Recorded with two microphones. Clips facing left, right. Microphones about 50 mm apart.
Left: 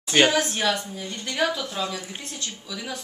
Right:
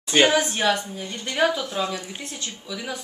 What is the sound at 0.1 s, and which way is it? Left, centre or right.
A woman's voice, centre.